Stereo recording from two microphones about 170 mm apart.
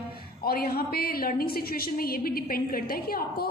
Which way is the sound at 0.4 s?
65° left (ahead or behind).